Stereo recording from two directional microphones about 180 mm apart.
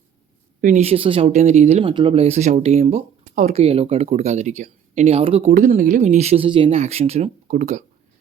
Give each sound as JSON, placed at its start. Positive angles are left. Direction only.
{"t": 0.6, "sound": "speech", "side_deg": -40}
{"t": 5.5, "sound": "speech", "side_deg": -50}